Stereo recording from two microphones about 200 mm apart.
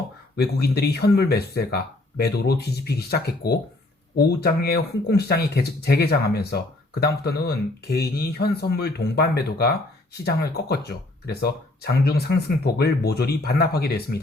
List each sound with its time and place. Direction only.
0.3 s speech: 55° left (ahead or behind)